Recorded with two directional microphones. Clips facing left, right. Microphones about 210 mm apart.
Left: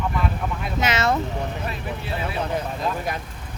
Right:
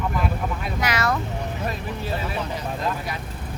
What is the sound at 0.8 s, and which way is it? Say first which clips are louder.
Speech: left 3 dB; 25° left (ahead or behind).